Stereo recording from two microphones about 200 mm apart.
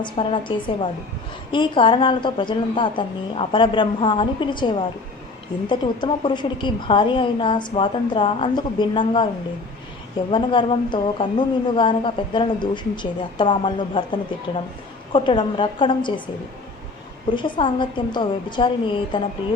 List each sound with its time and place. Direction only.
0.0 s a woman's voice: 25° left (ahead or behind)
10.3 s a woman's voice: 25° left (ahead or behind)
17.3 s a woman's voice: 25° left (ahead or behind)